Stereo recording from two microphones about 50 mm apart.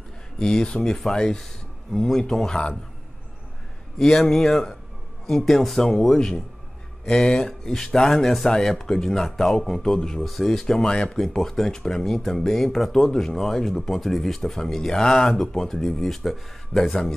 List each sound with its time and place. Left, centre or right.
0.4 s speech: centre
4.0 s speech: centre